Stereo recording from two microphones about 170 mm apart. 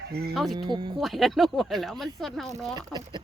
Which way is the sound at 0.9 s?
Centre (ahead or behind).